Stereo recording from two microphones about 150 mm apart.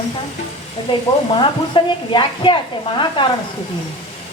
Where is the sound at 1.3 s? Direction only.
30° left (ahead or behind).